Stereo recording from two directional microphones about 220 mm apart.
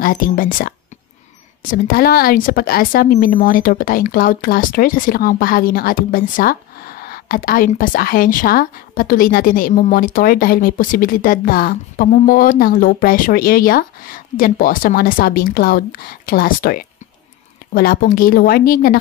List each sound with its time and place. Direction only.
0.0 s speech: 40° left (ahead or behind)